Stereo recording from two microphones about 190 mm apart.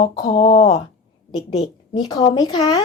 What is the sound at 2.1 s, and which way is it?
Speech, 20° left (ahead or behind).